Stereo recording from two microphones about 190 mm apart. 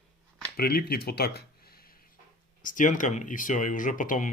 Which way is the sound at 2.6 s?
45° left (ahead or behind).